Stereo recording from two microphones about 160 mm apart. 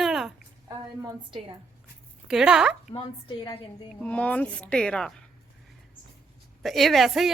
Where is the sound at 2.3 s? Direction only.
5° right (ahead or behind).